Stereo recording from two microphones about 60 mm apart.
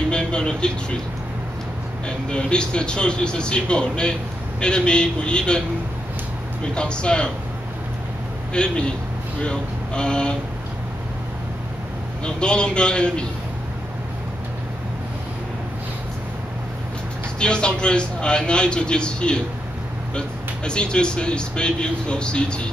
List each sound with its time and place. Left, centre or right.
0.1 s speech: centre
2.0 s speech: centre
6.6 s speech: centre
8.5 s speech: centre
12.3 s speech: centre
17.4 s speech: centre